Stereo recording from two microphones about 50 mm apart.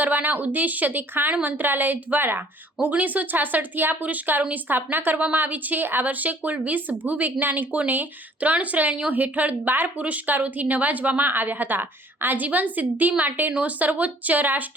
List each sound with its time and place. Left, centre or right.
0.0 s speech: right
2.9 s speech: right